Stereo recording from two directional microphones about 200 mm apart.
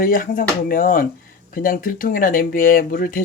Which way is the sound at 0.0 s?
45° left (ahead or behind).